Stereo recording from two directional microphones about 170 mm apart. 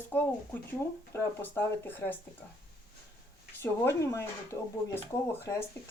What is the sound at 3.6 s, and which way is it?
Speech, 15° left (ahead or behind).